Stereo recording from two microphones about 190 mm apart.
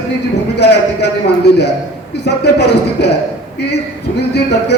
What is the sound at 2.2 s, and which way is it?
Speech, 60° left (ahead or behind).